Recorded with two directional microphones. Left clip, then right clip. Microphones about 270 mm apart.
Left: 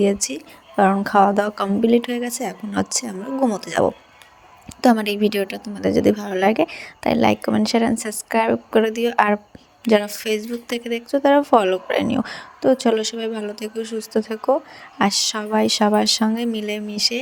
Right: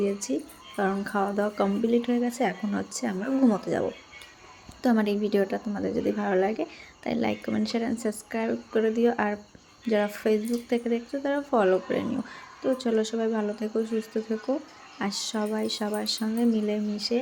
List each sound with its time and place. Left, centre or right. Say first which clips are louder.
0.0 s speech: left 8 dB; left